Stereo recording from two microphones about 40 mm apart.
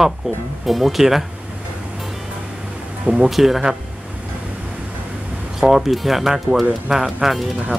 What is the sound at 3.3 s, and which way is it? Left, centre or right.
Speech, centre.